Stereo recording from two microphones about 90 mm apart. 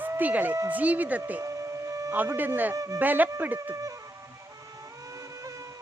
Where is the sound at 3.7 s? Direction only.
40° right (ahead or behind).